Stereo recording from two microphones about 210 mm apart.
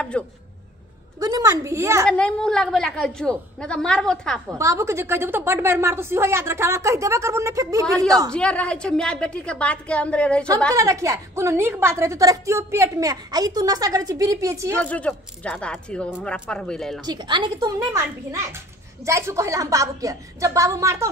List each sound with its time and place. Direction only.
0.1 s a woman's voice: 5° left (ahead or behind)
1.2 s a woman's voice: 15° right (ahead or behind)
2.0 s a woman's voice: 5° left (ahead or behind)
4.5 s a woman's voice: 15° right (ahead or behind)
8.3 s a woman's voice: 5° left (ahead or behind)
10.7 s a woman's voice: 15° right (ahead or behind)
14.8 s a woman's voice: 5° left (ahead or behind)
17.0 s a woman's voice: 20° right (ahead or behind)